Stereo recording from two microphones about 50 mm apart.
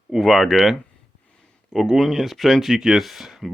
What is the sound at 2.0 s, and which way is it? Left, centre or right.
Speech, centre.